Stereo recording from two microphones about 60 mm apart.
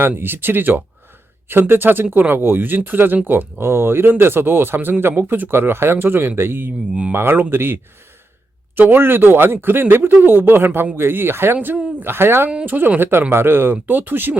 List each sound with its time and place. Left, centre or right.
0.2 s speech: right